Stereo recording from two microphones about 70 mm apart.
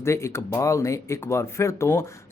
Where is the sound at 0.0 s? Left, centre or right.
Left.